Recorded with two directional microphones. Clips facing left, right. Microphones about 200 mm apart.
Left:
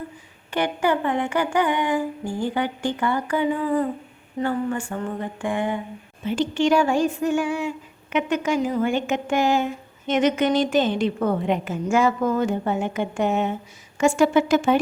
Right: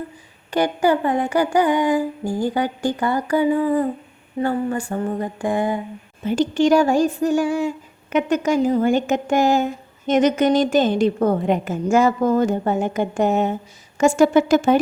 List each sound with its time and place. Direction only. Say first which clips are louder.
0.5 s a woman's voice: right 4 dB; 35° right (ahead or behind)